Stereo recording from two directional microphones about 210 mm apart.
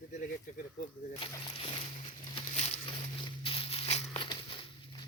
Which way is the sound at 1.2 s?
25° left (ahead or behind).